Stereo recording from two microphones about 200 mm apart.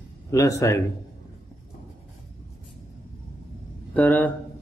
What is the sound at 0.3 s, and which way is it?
Speech, 15° left (ahead or behind).